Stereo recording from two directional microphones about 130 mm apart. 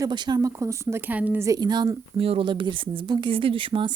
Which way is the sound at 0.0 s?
35° right (ahead or behind).